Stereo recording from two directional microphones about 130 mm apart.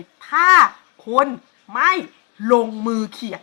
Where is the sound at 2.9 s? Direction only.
20° right (ahead or behind).